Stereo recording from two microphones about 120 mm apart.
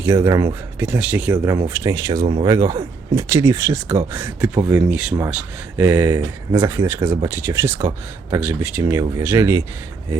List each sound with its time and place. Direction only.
0.0 s speech: 25° right (ahead or behind)
0.8 s speech: 10° right (ahead or behind)
1.5 s speech: 30° right (ahead or behind)